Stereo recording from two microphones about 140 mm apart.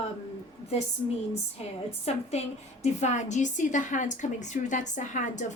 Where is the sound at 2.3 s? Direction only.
50° left (ahead or behind).